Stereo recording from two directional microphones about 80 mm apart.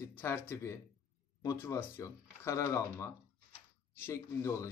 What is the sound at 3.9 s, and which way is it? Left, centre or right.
Speech, left.